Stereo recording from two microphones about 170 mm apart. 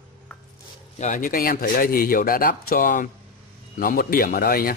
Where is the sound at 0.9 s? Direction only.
45° left (ahead or behind).